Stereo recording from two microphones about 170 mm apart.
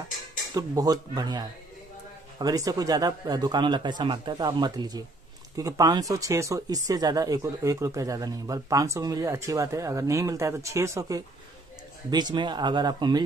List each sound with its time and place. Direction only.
0.6 s speech: 20° right (ahead or behind)